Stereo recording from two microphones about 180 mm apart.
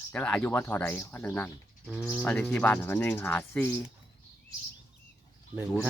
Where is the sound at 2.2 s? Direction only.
10° left (ahead or behind).